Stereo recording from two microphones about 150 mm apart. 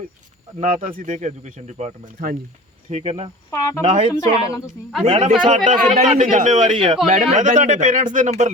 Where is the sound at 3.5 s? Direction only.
20° left (ahead or behind).